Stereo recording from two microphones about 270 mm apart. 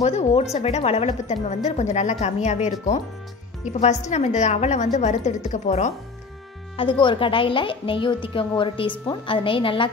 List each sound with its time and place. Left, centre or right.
0.0 s a woman's voice: left